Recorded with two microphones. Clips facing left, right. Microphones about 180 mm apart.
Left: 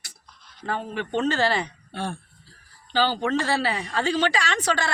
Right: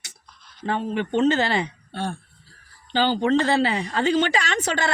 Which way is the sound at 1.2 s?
20° right (ahead or behind).